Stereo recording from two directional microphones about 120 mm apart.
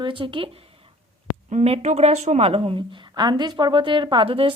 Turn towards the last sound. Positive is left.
turn(degrees=-50)  # may be behind; listen again after turning